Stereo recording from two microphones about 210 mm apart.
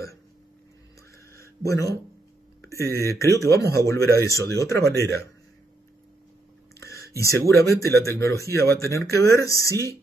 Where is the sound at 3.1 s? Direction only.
15° left (ahead or behind).